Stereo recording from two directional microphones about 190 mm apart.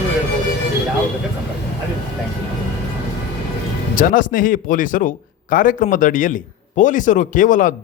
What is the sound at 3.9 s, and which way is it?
A man's voice, 45° left (ahead or behind).